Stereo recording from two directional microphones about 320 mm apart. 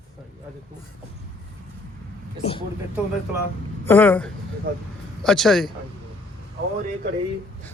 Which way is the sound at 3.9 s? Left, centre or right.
Centre.